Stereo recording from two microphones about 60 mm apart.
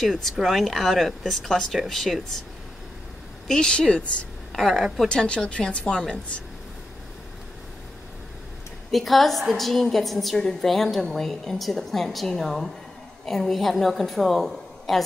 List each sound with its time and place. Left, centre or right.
0.0 s speech: centre
3.4 s a woman's voice: centre
4.6 s speech: centre
4.9 s a woman's voice: centre
8.9 s speech: centre